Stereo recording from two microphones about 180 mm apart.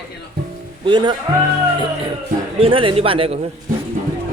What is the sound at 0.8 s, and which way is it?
Speech, 25° right (ahead or behind).